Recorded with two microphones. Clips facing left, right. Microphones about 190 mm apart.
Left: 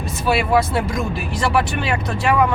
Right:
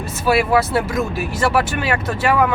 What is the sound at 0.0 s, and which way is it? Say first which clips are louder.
Speech: right 2 dB; 5° right (ahead or behind).